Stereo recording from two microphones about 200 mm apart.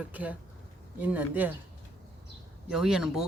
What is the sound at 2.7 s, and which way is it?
Speech, centre (ahead or behind).